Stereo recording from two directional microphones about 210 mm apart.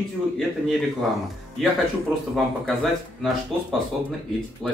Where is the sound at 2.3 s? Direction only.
Centre (ahead or behind).